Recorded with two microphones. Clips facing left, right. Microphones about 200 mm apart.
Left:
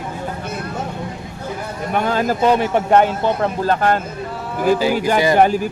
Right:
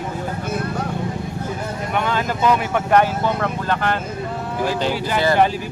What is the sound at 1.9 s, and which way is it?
Speech, 40° left (ahead or behind).